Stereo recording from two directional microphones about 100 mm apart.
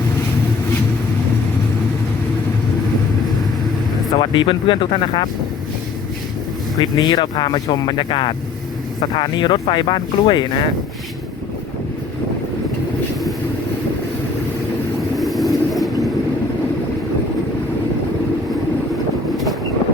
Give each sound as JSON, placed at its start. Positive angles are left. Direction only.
{"t": 4.1, "sound": "speech", "side_deg": 55}
{"t": 6.7, "sound": "speech", "side_deg": 45}
{"t": 15.1, "sound": "vehicle", "side_deg": 0}